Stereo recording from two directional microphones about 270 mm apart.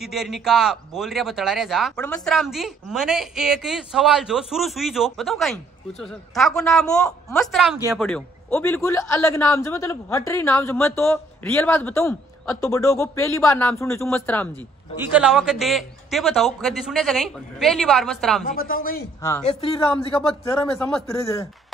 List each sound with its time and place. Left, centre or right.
0.0 s a man's voice: centre
18.4 s speech: left
19.4 s a man's voice: left
20.6 s a man's voice: centre